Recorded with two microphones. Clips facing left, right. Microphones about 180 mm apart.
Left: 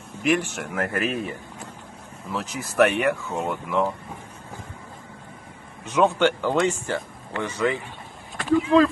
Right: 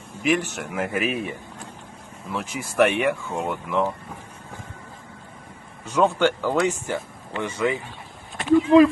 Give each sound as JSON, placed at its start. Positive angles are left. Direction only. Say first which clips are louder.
{"t": 0.1, "sound": "speech", "louder": "even", "side_deg": 0}
{"t": 5.9, "sound": "speech", "louder": "even", "side_deg": 5}
{"t": 6.4, "sound": "speech", "louder": "even", "side_deg": -5}